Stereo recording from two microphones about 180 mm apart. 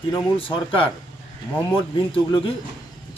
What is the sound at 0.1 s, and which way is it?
Speech, 30° left (ahead or behind).